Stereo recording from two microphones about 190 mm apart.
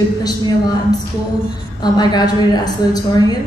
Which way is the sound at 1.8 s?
20° left (ahead or behind).